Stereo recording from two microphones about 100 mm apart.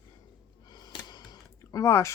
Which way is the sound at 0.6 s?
45° left (ahead or behind).